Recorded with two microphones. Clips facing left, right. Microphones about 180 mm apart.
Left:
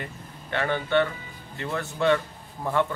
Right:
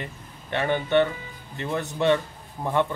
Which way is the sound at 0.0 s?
20° right (ahead or behind).